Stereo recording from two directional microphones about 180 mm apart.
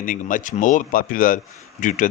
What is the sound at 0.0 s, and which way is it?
A man's voice, 50° left (ahead or behind).